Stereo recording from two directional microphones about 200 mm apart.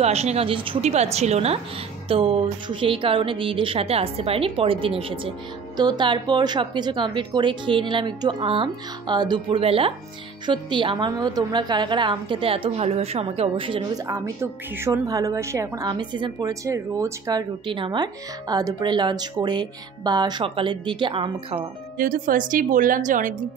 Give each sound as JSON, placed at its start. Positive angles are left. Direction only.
{"t": 0.0, "sound": "a woman's voice", "side_deg": -30}
{"t": 14.0, "sound": "a woman's voice", "side_deg": -15}
{"t": 21.9, "sound": "a woman's voice", "side_deg": -45}